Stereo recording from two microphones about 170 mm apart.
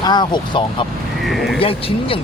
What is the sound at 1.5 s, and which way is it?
Speech, 30° left (ahead or behind).